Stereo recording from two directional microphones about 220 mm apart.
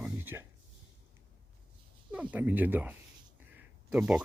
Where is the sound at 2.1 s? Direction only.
5° right (ahead or behind).